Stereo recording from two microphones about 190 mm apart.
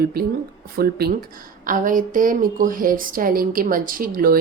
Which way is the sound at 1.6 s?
45° right (ahead or behind).